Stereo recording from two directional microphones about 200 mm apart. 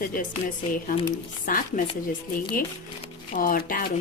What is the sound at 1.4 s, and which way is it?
Speech, 45° left (ahead or behind).